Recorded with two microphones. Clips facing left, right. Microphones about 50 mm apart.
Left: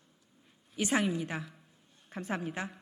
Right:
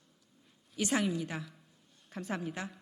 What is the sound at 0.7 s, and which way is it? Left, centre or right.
A woman's voice, left.